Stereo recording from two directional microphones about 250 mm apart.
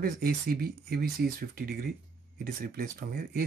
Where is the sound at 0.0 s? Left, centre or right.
Right.